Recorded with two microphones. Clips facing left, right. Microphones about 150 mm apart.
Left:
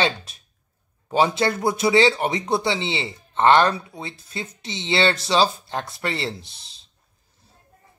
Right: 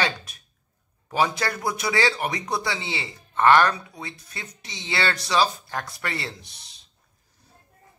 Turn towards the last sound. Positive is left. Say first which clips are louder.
# left 7 dB
turn(degrees=30)  # may be behind; listen again after turning